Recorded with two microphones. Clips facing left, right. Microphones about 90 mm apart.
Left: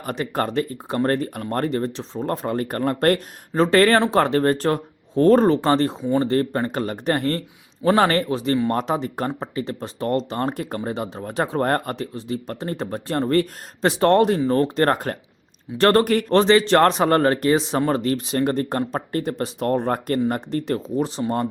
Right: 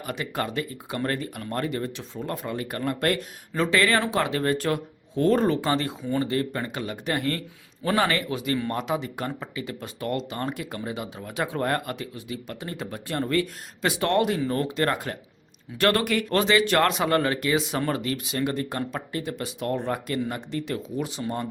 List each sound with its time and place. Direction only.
0.0 s speech: 40° left (ahead or behind)